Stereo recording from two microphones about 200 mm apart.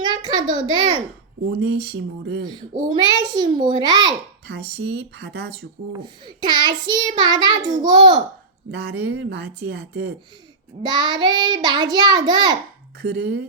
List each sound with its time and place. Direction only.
0.0 s a sound: 20° right (ahead or behind)
0.7 s a child's voice: 20° right (ahead or behind)
1.5 s speech: 55° right (ahead or behind)
2.4 s a child's voice: 20° right (ahead or behind)
4.4 s speech: 60° right (ahead or behind)
5.9 s a child's voice: 20° right (ahead or behind)
8.7 s speech: 55° right (ahead or behind)
10.8 s a child's voice: 20° right (ahead or behind)
13.0 s speech: 55° right (ahead or behind)